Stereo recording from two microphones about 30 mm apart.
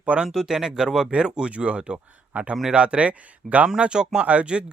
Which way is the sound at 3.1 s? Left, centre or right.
Right.